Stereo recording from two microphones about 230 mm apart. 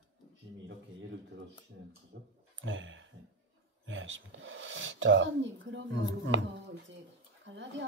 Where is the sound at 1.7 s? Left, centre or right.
Right.